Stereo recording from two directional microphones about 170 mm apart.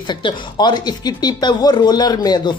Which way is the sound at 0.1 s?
25° left (ahead or behind).